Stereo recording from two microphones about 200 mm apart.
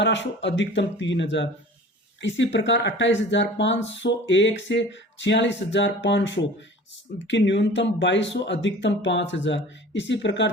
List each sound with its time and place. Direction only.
0.0 s speech: 65° left (ahead or behind)